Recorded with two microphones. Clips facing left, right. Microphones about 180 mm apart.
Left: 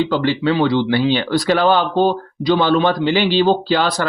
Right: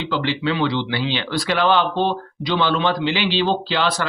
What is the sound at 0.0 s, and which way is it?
A man's voice, 45° left (ahead or behind).